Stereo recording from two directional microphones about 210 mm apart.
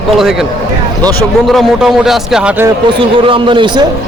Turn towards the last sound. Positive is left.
turn(degrees=-20)  # may be behind; listen again after turning